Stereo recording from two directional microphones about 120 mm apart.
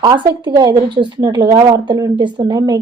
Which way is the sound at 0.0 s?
40° right (ahead or behind).